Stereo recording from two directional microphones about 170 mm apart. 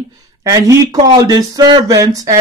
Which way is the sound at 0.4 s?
20° right (ahead or behind).